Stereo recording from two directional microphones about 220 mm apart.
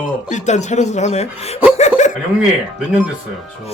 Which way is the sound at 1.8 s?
30° left (ahead or behind).